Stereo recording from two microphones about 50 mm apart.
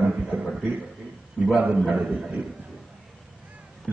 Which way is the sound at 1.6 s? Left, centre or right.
Right.